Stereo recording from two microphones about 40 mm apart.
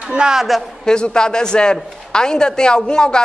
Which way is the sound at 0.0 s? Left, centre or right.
Right.